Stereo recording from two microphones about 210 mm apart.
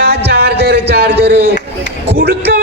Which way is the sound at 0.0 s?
50° right (ahead or behind).